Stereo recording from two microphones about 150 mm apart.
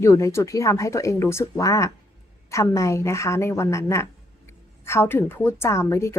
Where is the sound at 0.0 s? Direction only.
20° left (ahead or behind).